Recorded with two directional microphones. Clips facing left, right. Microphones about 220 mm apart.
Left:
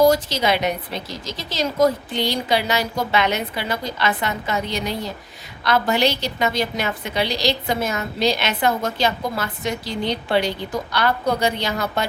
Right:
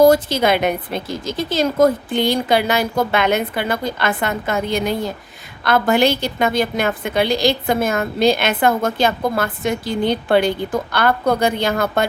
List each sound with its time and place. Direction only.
0.0 s a woman's voice: 55° right (ahead or behind)